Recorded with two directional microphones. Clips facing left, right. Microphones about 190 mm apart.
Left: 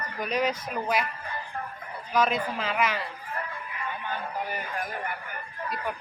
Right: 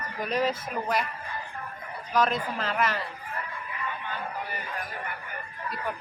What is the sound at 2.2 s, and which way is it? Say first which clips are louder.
Speech: even; 5° left (ahead or behind).